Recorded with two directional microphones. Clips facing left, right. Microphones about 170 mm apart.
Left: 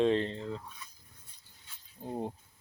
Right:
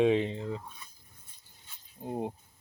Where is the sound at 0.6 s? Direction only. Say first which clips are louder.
Right 1 dB; 25° right (ahead or behind).